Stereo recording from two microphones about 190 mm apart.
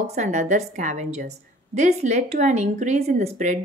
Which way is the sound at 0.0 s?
35° right (ahead or behind).